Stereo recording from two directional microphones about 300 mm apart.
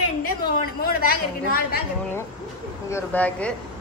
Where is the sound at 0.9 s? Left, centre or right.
Left.